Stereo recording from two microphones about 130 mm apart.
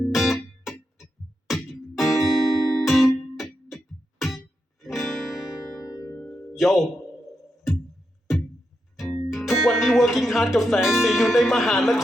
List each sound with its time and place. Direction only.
0.0 s music: centre (ahead or behind)
4.8 s music: centre (ahead or behind)
5.8 s music: 25° left (ahead or behind)
6.5 s speech: centre (ahead or behind)
9.0 s speech: centre (ahead or behind)